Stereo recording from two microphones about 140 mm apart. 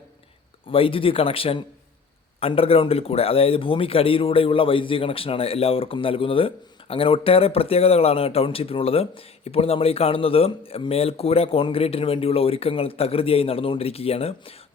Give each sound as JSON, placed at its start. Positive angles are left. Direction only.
{"t": 0.7, "sound": "a man's voice", "side_deg": 40}